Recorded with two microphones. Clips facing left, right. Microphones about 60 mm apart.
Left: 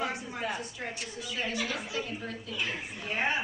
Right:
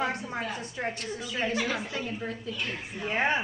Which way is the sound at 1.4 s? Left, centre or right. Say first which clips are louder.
Right 4 dB; right.